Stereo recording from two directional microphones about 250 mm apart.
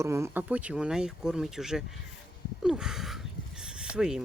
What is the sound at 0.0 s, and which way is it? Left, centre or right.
Speech, centre.